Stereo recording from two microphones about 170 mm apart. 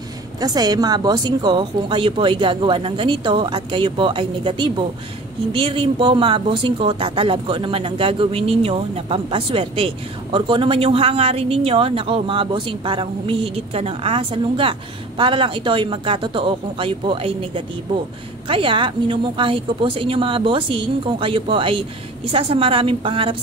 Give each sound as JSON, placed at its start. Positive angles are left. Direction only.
{"t": 0.4, "sound": "speech", "side_deg": -25}